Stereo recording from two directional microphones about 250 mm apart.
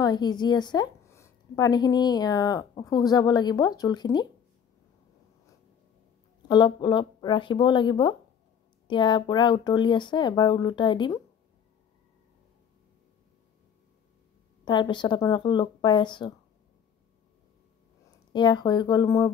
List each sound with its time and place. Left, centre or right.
0.0 s a woman's voice: centre
6.5 s a woman's voice: centre
14.6 s a woman's voice: centre
18.3 s a woman's voice: centre